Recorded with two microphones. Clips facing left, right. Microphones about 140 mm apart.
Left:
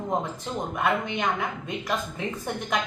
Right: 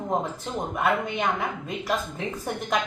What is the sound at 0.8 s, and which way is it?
Speech, centre (ahead or behind).